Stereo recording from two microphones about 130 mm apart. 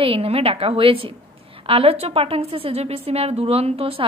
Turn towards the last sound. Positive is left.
turn(degrees=-45)  # may be behind; listen again after turning